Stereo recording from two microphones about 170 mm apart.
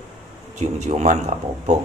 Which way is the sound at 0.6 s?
45° right (ahead or behind).